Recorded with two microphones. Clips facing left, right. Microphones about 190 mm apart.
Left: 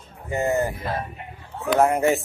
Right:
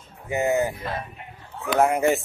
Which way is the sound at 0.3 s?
5° right (ahead or behind).